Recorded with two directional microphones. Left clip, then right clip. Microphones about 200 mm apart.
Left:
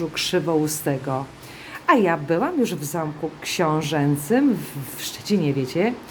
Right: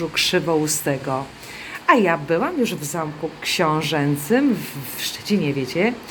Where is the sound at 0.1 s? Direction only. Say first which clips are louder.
Right 4 dB; 20° left (ahead or behind).